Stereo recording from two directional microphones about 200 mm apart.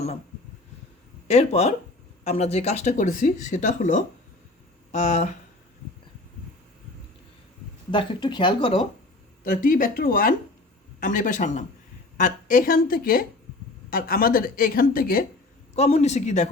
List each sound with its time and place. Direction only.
1.3 s speech: 35° left (ahead or behind)
7.9 s speech: 25° left (ahead or behind)
9.4 s speech: 45° left (ahead or behind)
15.7 s speech: 30° left (ahead or behind)